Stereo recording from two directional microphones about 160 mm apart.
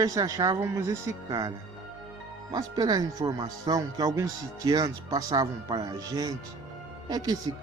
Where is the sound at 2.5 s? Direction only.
25° right (ahead or behind).